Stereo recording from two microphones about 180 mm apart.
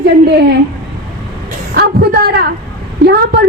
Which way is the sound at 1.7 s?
60° right (ahead or behind).